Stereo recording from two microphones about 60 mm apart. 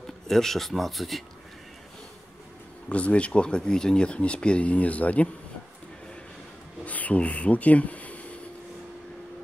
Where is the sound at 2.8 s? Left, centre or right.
Left.